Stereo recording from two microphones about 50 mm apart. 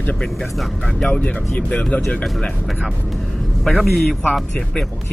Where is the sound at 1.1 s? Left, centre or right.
Left.